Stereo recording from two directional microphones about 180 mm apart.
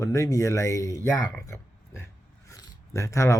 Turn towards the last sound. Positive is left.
turn(degrees=15)  # may be behind; listen again after turning